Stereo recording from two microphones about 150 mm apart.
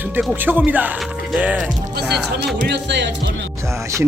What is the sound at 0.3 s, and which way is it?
Speech, 10° right (ahead or behind).